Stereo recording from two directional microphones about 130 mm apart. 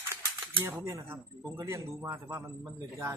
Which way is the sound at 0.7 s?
20° right (ahead or behind).